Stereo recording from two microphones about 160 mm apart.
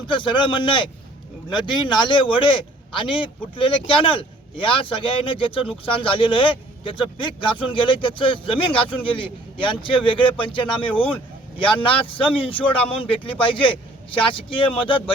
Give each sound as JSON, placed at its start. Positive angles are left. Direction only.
{"t": 0.1, "sound": "speech", "side_deg": 30}